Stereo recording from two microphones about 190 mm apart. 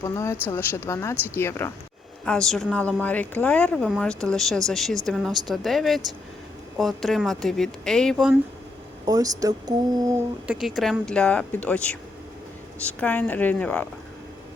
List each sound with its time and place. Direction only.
0.0 s speech: 15° left (ahead or behind)
1.1 s speech: 10° right (ahead or behind)
1.4 s speech: 15° left (ahead or behind)
9.0 s speech: 20° right (ahead or behind)
10.4 s speech: 5° right (ahead or behind)
13.0 s speech: 10° left (ahead or behind)